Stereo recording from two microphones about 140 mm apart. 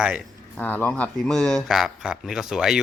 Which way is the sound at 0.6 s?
10° left (ahead or behind).